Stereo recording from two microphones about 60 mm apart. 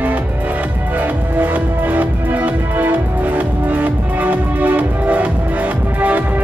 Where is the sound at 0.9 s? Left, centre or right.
Right.